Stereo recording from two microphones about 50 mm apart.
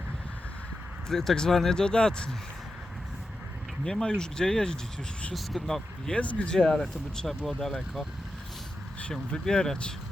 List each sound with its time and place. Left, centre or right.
1.0 s speech: centre
3.8 s speech: centre
5.3 s speech: centre
6.1 s speech: left
6.6 s speech: centre
9.3 s speech: centre